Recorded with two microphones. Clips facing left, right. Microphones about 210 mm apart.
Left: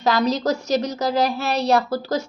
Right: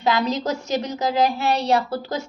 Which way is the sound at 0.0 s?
40° left (ahead or behind).